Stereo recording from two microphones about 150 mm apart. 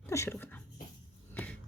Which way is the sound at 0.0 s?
15° left (ahead or behind).